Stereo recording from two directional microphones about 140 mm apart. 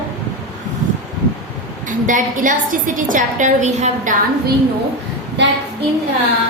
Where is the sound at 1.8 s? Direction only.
70° right (ahead or behind).